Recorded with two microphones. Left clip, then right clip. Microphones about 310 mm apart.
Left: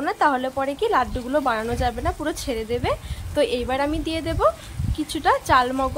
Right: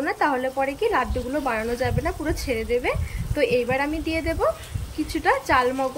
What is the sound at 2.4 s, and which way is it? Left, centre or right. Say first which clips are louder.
Speech: right 4 dB; left.